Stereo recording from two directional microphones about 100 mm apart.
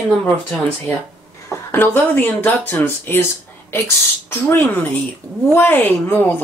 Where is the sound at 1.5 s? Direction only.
25° left (ahead or behind).